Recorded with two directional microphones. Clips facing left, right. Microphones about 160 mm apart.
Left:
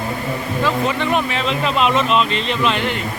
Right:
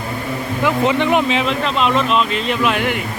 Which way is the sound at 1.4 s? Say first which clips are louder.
Even; 5° left (ahead or behind).